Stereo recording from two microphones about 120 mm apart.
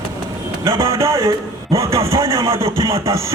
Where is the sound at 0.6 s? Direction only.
25° right (ahead or behind).